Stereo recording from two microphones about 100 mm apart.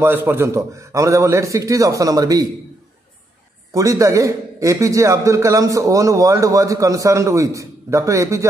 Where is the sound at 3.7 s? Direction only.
35° right (ahead or behind).